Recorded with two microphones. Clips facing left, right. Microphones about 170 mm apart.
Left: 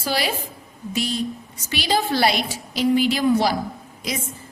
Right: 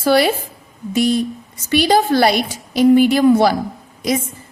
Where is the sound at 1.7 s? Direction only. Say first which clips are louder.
Right 8 dB; 45° right (ahead or behind).